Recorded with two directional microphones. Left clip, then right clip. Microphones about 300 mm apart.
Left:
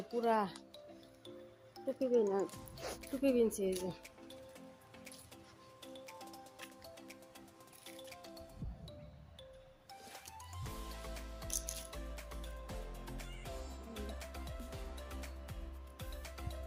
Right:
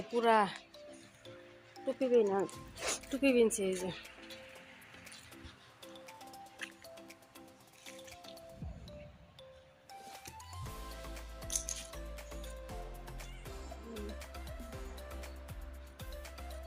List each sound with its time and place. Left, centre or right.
0.2 s speech: centre
1.7 s speech: centre
2.3 s music: centre
3.2 s speech: centre
5.8 s music: centre
9.9 s music: centre